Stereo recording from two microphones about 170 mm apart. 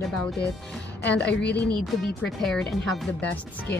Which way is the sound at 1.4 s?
80° left.